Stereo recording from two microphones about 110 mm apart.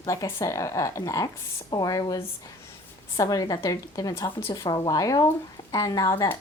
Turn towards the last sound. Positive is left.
turn(degrees=35)  # may be behind; listen again after turning